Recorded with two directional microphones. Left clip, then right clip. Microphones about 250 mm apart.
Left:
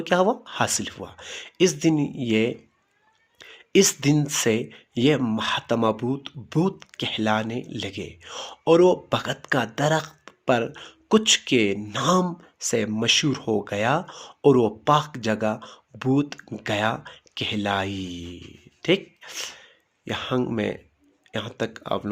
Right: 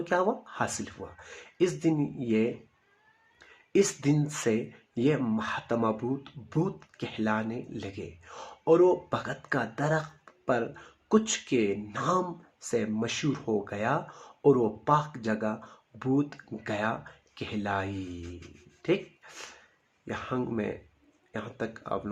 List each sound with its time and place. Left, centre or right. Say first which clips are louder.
0.0 s speech: left 6 dB; left